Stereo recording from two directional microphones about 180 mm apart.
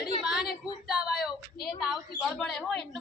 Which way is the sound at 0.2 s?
Centre (ahead or behind).